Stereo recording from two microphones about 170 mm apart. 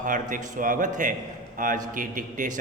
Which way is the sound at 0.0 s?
50° right (ahead or behind).